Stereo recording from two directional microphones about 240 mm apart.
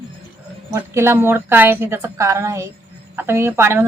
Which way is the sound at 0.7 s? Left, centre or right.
Centre.